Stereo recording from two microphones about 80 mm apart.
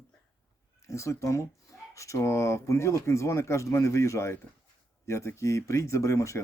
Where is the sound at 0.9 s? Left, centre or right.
Left.